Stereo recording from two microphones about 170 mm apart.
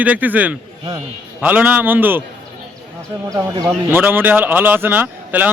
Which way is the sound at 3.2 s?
20° right (ahead or behind).